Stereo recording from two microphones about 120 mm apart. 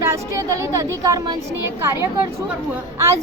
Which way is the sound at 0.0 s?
25° right (ahead or behind).